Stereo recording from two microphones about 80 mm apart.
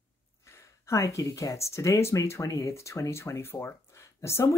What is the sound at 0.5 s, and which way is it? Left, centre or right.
Speech, left.